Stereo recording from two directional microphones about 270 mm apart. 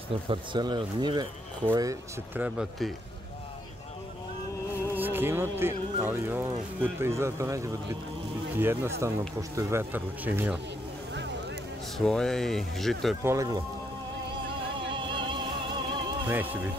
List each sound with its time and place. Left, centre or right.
0.3 s speech: centre
4.9 s speech: centre
12.0 s speech: centre
14.9 s vehicle: centre
15.9 s music: centre